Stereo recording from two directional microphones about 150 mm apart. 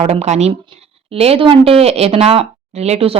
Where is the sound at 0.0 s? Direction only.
45° right (ahead or behind).